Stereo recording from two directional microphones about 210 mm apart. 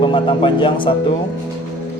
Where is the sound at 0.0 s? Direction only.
25° left (ahead or behind).